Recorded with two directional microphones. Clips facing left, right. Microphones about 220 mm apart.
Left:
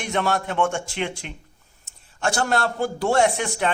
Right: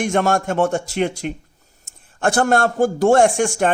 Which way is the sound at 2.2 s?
55° right (ahead or behind).